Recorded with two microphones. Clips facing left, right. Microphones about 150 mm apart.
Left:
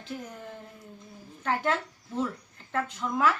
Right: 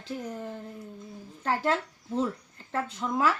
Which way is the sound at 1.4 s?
35° right (ahead or behind).